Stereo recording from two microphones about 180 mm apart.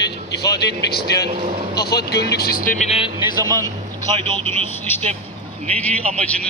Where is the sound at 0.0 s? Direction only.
65° left (ahead or behind).